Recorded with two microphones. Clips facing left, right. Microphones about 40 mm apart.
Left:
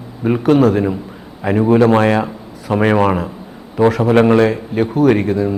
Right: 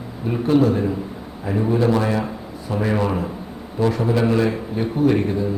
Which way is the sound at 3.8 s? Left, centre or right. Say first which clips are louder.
Left 8 dB; left.